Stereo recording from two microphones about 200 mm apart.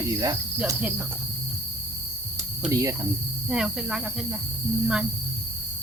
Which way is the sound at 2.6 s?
15° right (ahead or behind).